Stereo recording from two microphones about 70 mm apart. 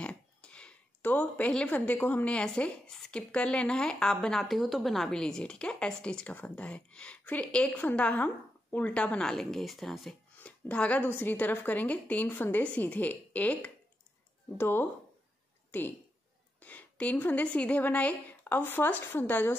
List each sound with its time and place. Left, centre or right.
0.0 s speech: centre
10.4 s a woman's voice: centre
14.6 s a woman's voice: left